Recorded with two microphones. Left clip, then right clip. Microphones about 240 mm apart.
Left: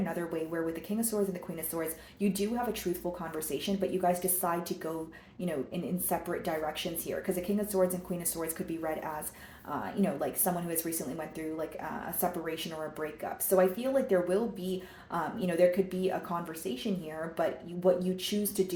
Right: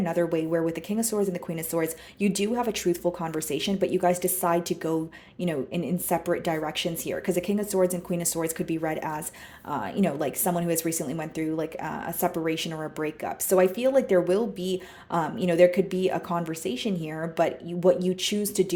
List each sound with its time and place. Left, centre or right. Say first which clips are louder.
0.0 s speech: right 9 dB; right